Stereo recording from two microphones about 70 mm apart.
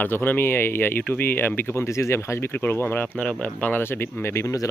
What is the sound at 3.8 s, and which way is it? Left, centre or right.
Speech, left.